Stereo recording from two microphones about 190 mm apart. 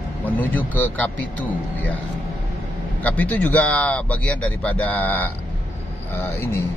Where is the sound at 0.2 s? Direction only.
10° left (ahead or behind).